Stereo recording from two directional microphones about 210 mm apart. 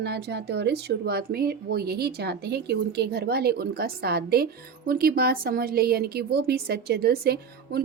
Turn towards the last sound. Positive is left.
turn(degrees=-50)  # may be behind; listen again after turning